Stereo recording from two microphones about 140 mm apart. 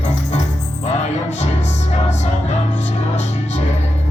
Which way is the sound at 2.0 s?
55° left (ahead or behind).